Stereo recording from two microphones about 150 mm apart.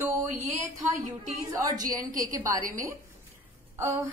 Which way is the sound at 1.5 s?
20° right (ahead or behind).